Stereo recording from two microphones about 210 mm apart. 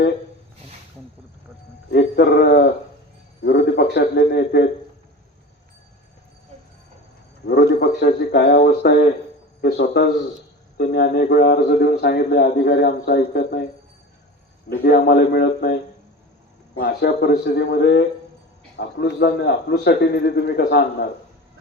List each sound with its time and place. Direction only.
1.9 s a man's voice: 50° left (ahead or behind)
7.4 s a man's voice: 50° left (ahead or behind)
14.7 s a man's voice: 50° left (ahead or behind)